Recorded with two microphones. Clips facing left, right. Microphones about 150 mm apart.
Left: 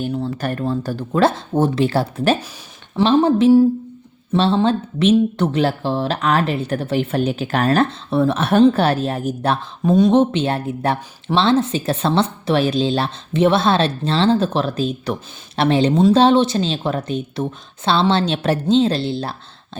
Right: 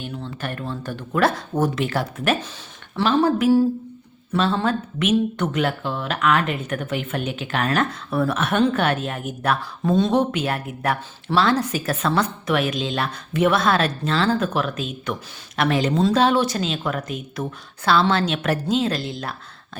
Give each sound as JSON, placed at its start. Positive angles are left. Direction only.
{"t": 0.0, "sound": "a woman's voice", "side_deg": 40}
{"t": 9.8, "sound": "a woman's voice", "side_deg": 15}